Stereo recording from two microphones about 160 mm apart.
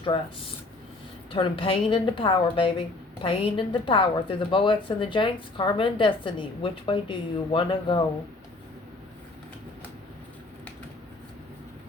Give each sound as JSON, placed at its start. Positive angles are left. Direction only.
{"t": 1.3, "sound": "a woman's voice", "side_deg": 35}